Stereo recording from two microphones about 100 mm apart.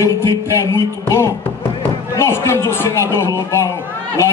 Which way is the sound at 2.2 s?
25° left (ahead or behind).